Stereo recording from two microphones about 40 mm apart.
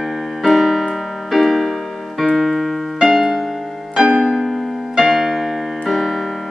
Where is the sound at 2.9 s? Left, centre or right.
Centre.